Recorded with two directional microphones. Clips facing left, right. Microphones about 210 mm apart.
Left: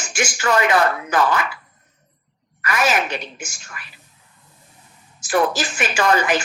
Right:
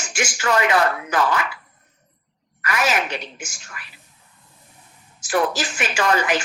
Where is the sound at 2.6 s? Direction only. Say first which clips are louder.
Left 2 dB; 45° left (ahead or behind).